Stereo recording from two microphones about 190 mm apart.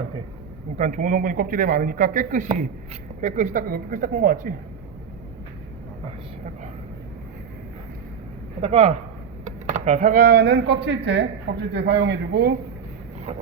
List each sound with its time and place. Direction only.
0.8 s a man's voice: 40° right (ahead or behind)
8.6 s speech: 30° right (ahead or behind)
9.6 s a sound: 35° right (ahead or behind)
10.2 s a man's voice: 55° right (ahead or behind)